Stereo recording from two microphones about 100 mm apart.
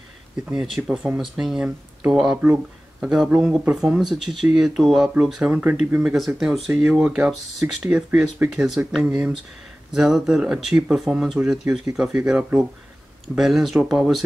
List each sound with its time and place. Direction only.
0.5 s speech: 5° right (ahead or behind)
5.5 s speech: 15° right (ahead or behind)